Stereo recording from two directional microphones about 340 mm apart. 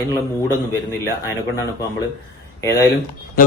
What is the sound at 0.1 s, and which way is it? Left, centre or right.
Speech, centre.